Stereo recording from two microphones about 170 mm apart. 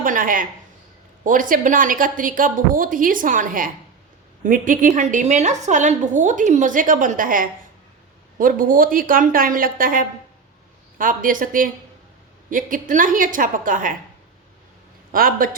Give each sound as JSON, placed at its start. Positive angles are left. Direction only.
{"t": 0.0, "sound": "a woman's voice", "side_deg": -55}
{"t": 15.1, "sound": "a woman's voice", "side_deg": -55}